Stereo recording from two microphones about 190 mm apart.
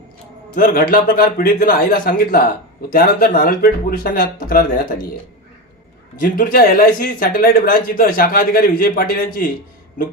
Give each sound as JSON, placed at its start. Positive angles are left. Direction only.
{"t": 0.5, "sound": "speech", "side_deg": 50}
{"t": 6.1, "sound": "speech", "side_deg": 50}